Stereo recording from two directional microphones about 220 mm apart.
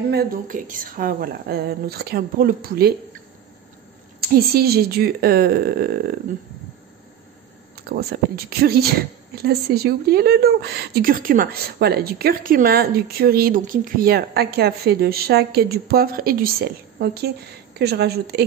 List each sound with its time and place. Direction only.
0.1 s speech: 45° right (ahead or behind)
4.2 s a woman's voice: 45° right (ahead or behind)
7.7 s a woman's voice: 45° right (ahead or behind)